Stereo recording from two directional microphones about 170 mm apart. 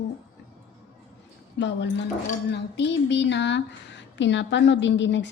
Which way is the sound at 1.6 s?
90° left.